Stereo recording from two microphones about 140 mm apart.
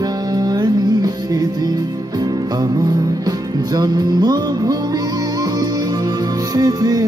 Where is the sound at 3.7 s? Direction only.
30° right (ahead or behind).